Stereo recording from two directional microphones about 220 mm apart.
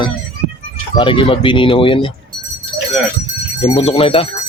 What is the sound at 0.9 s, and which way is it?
Speech, 20° left (ahead or behind).